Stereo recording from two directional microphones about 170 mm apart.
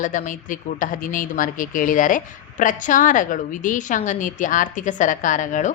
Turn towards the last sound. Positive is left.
turn(degrees=50)  # may be behind; listen again after turning